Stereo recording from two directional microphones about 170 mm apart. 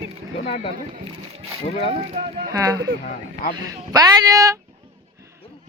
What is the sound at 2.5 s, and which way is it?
Speech, 20° right (ahead or behind).